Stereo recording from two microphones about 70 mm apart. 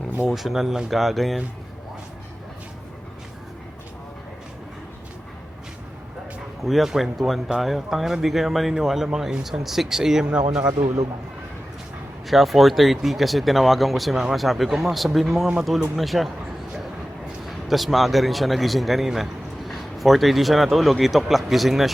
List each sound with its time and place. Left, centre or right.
0.3 s speech: centre
6.6 s speech: centre
10.8 s a man's voice: right
12.3 s speech: centre
17.4 s a man's voice: centre